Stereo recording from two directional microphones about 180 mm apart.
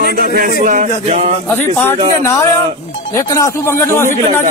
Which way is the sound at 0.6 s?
45° right (ahead or behind).